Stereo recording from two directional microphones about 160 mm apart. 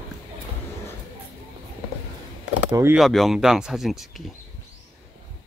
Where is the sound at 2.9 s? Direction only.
Centre (ahead or behind).